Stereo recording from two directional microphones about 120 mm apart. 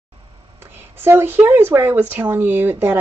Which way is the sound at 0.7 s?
20° right (ahead or behind).